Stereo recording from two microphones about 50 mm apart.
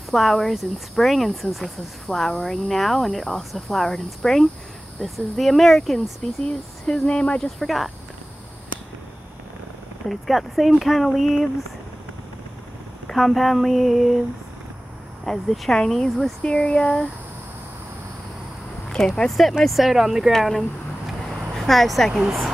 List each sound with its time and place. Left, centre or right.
0.1 s speech: centre
6.4 s speech: left
7.4 s speech: centre
10.0 s speech: centre
13.0 s speech: centre
15.2 s speech: centre
18.9 s speech: centre
20.3 s speech: centre